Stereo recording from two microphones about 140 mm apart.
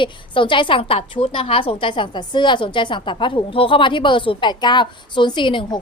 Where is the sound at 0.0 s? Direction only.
35° left (ahead or behind).